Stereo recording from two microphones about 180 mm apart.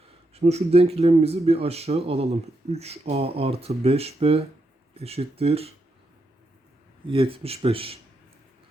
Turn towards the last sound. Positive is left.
turn(degrees=-30)  # may be behind; listen again after turning